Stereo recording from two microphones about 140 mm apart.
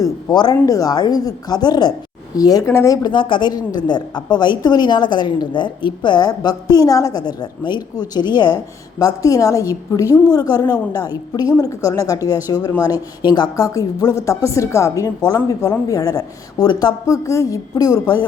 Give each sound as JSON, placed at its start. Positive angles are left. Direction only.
{"t": 0.0, "sound": "a woman's voice", "side_deg": 30}